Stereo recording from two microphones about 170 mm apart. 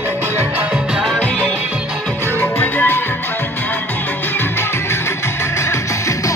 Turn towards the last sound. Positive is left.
turn(degrees=20)  # may be behind; listen again after turning